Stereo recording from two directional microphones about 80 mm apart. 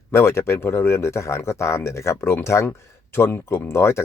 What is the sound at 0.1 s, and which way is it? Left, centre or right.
Speech, left.